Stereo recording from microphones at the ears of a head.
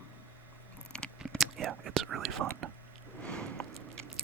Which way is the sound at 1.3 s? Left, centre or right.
Right.